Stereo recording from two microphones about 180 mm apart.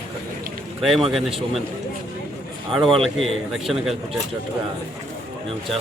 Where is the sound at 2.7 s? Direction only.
Centre (ahead or behind).